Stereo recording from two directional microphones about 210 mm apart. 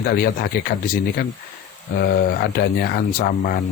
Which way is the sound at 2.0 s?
45° left (ahead or behind).